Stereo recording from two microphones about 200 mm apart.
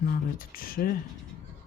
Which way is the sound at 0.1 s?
45° left (ahead or behind).